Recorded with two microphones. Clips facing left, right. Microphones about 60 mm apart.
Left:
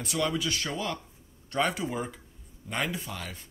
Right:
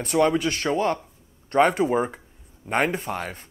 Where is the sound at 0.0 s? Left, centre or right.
Right.